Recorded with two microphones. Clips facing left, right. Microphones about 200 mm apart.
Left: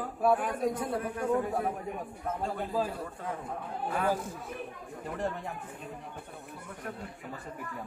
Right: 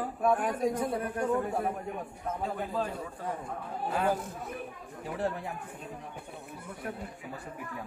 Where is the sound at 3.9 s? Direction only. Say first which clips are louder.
Right 1 dB; 25° right (ahead or behind).